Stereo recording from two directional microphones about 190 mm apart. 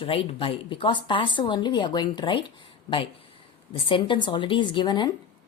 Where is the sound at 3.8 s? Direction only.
25° left (ahead or behind).